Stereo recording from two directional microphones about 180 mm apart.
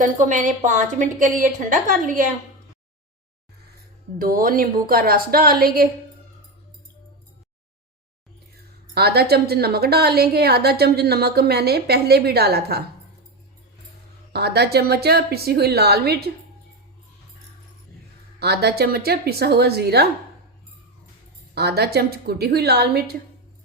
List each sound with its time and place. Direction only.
0.0 s a woman's voice: 45° right (ahead or behind)
4.2 s a woman's voice: 50° right (ahead or behind)
9.0 s a woman's voice: 60° right (ahead or behind)
14.3 s a woman's voice: 65° right (ahead or behind)
18.3 s a woman's voice: 65° right (ahead or behind)
21.5 s a woman's voice: 65° right (ahead or behind)